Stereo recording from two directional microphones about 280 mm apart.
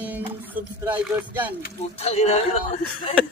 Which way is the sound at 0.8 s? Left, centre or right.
Centre.